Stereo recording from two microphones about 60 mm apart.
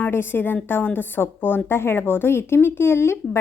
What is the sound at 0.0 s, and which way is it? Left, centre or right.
A woman's voice, left.